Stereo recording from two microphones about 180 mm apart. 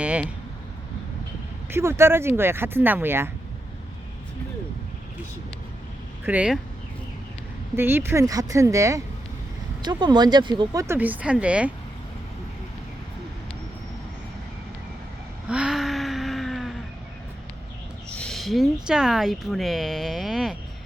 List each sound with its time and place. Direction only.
0.0 s speech: 5° right (ahead or behind)
1.7 s speech: 15° right (ahead or behind)
6.2 s speech: 5° right (ahead or behind)
7.8 s speech: 10° right (ahead or behind)
15.4 s a sound: 5° right (ahead or behind)
18.2 s speech: centre (ahead or behind)